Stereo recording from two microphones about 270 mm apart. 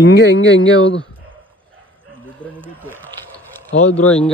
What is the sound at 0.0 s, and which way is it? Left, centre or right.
Speech, left.